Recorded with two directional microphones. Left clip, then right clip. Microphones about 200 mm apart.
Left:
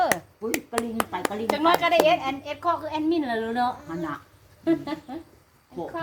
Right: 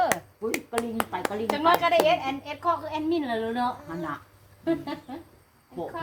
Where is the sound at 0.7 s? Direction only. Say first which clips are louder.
Left 1 dB; 5° right (ahead or behind).